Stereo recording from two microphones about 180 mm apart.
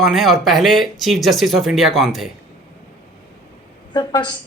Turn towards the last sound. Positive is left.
turn(degrees=25)  # may be behind; listen again after turning